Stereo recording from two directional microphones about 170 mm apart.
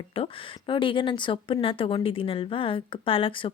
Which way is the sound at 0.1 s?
35° left (ahead or behind).